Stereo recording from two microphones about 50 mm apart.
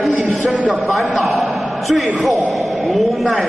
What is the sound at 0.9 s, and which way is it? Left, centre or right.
A man's voice, centre.